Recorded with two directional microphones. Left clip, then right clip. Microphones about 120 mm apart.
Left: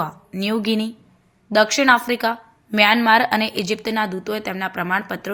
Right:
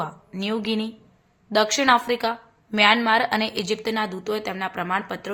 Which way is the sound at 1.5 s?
20° left (ahead or behind).